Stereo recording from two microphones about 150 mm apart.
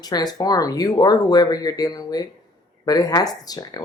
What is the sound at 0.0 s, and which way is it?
Speech, 25° left (ahead or behind).